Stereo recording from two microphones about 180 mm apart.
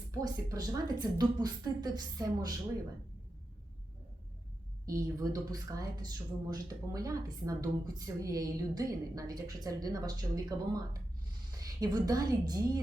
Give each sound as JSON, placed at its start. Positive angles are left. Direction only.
{"t": 0.1, "sound": "speech", "side_deg": -20}
{"t": 4.9, "sound": "speech", "side_deg": -20}
{"t": 11.8, "sound": "speech", "side_deg": -20}